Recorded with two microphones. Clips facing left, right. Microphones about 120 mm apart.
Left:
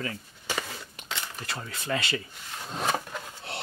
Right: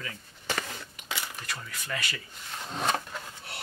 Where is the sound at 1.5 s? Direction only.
30° left (ahead or behind).